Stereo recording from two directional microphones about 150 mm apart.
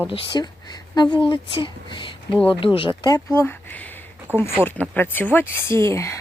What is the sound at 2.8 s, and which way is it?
Speech, 30° left (ahead or behind).